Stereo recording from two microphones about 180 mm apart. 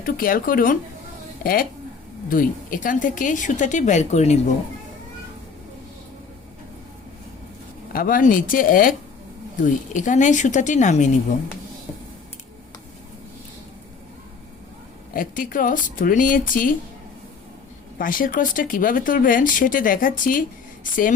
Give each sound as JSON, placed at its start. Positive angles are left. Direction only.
{"t": 0.0, "sound": "speech", "side_deg": 50}
{"t": 2.3, "sound": "speech", "side_deg": 50}
{"t": 7.9, "sound": "speech", "side_deg": 50}
{"t": 15.1, "sound": "speech", "side_deg": 50}
{"t": 17.9, "sound": "speech", "side_deg": 50}